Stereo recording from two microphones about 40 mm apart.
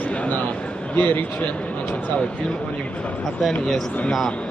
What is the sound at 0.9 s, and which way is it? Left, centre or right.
Speech, left.